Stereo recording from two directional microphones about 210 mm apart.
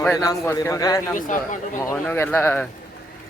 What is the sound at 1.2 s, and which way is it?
Speech, 35° left (ahead or behind).